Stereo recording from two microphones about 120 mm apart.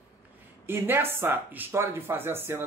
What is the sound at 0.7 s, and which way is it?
Speech, 20° right (ahead or behind).